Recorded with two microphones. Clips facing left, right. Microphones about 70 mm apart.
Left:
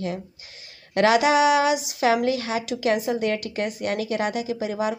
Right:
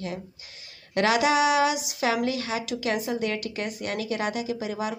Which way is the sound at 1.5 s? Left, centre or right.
Left.